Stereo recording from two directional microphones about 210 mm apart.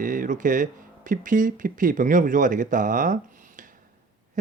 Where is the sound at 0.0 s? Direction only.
40° right (ahead or behind).